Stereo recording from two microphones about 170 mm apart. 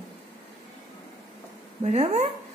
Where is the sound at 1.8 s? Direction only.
40° right (ahead or behind).